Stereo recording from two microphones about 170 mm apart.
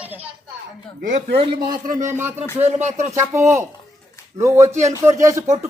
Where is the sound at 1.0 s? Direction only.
50° right (ahead or behind).